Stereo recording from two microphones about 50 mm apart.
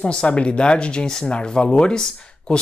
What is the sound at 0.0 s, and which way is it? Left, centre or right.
Speech, left.